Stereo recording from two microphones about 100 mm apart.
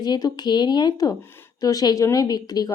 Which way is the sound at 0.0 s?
45° left (ahead or behind).